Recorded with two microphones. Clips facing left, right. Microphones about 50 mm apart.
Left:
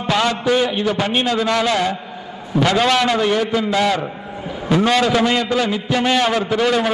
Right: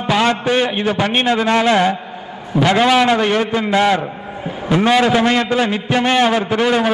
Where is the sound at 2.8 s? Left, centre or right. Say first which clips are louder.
Right 5 dB; centre.